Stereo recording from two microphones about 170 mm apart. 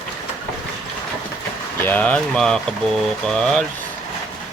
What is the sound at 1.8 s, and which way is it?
Speech, 10° left (ahead or behind).